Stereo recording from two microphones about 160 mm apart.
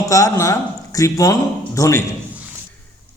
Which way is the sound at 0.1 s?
20° left (ahead or behind).